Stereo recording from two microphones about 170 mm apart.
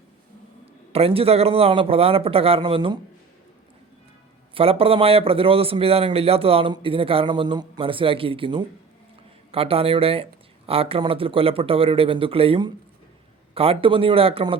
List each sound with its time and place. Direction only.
0.9 s a man's voice: 35° right (ahead or behind)
4.5 s a man's voice: 35° right (ahead or behind)